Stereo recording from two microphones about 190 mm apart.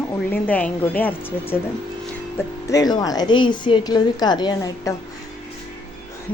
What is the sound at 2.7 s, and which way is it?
A woman's voice, 20° left (ahead or behind).